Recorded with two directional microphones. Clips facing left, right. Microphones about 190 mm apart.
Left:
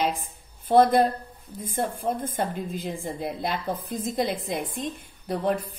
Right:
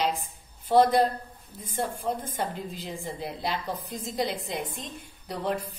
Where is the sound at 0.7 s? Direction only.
55° left (ahead or behind).